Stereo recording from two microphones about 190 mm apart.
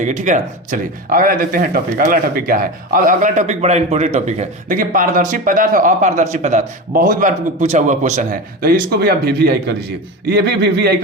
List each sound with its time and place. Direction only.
0.0 s speech: 40° right (ahead or behind); by 10.9 s 60° right (ahead or behind)